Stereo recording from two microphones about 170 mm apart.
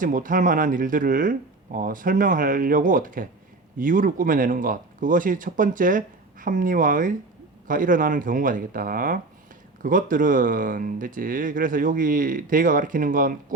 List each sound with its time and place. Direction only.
0.0 s speech: 55° right (ahead or behind)